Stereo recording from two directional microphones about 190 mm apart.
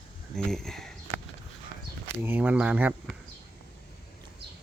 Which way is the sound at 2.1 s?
10° right (ahead or behind).